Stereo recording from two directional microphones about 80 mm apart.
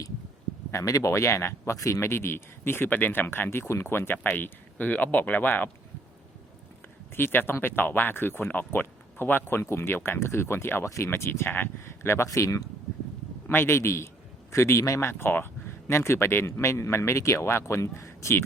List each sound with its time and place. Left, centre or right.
0.7 s speech: left
7.1 s speech: left
13.5 s speech: left
15.2 s speech: left